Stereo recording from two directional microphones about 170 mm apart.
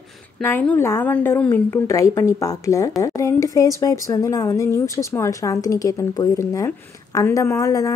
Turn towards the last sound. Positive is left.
turn(degrees=20)  # may be behind; listen again after turning